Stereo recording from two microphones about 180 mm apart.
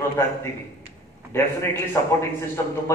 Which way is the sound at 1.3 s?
15° left (ahead or behind).